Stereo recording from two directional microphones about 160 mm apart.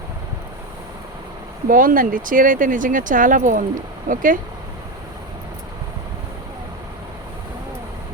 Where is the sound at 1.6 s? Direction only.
60° right (ahead or behind).